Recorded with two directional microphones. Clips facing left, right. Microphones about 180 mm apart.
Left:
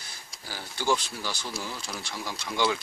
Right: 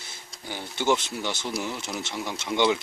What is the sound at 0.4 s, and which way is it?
Speech, 20° right (ahead or behind).